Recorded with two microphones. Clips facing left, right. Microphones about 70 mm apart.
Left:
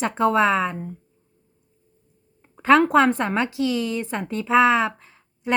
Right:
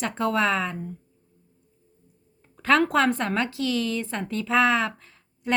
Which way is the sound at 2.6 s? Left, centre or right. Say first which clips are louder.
Left 5 dB; left.